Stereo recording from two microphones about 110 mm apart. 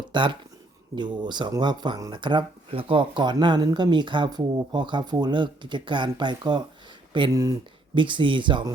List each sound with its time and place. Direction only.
0.1 s speech: 45° right (ahead or behind)
2.6 s speech: 55° right (ahead or behind)